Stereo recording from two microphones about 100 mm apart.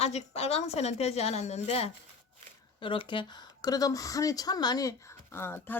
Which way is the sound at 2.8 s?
60° left (ahead or behind).